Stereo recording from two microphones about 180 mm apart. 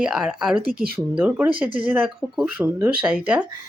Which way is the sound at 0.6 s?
55° right (ahead or behind).